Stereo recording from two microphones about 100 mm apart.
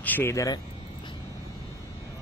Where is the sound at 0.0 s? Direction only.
20° left (ahead or behind).